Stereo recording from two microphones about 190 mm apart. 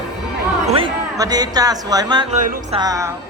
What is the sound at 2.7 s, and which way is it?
Speech, 20° right (ahead or behind).